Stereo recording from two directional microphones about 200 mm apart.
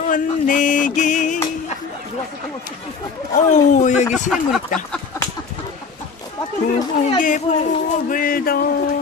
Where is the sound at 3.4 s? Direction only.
35° left (ahead or behind).